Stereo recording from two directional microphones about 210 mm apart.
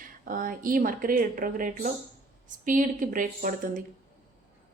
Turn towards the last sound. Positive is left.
turn(degrees=-40)  # may be behind; listen again after turning